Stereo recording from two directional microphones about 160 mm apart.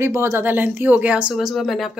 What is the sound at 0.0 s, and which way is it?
A woman's voice, 15° right (ahead or behind).